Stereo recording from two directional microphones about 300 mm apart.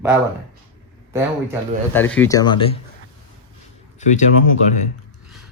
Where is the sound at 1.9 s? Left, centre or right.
Centre.